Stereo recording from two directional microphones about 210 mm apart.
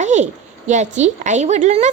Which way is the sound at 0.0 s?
35° right (ahead or behind).